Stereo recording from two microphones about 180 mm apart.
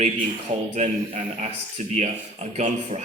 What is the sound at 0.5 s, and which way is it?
Speech, 35° right (ahead or behind).